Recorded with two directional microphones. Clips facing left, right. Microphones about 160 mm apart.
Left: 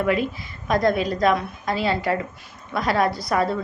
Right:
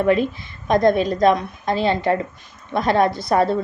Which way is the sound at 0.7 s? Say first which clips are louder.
Right 4 dB; 25° right (ahead or behind).